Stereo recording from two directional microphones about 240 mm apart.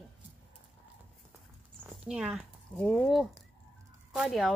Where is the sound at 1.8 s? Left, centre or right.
Centre.